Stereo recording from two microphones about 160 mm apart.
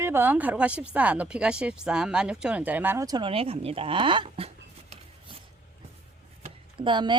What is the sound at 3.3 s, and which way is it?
Speech, 35° right (ahead or behind).